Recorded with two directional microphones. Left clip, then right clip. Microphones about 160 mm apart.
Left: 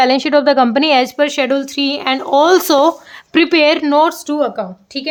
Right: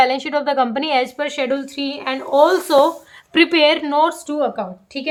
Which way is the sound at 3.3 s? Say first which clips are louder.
Left 2 dB; 40° left (ahead or behind).